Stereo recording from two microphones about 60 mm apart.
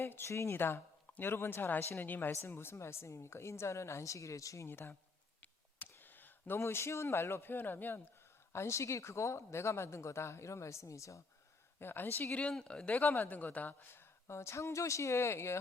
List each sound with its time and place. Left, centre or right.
0.1 s speech: left
4.7 s a woman's voice: left
6.0 s a sound: left
6.6 s speech: left
8.5 s speech: left
11.8 s a woman's voice: left
12.5 s a man's voice: centre
13.9 s speech: left